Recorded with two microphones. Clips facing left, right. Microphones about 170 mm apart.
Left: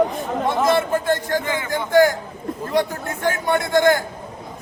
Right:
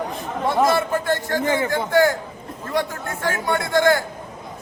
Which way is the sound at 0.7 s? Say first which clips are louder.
Left 2 dB; 20° left (ahead or behind).